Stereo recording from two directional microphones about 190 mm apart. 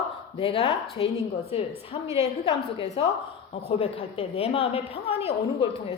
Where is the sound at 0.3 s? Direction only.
30° left (ahead or behind).